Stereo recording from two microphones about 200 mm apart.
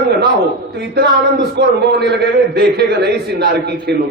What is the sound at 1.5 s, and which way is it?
A man's voice, 55° right (ahead or behind).